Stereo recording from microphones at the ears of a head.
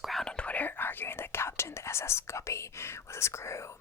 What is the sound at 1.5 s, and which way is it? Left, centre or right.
Speech, left.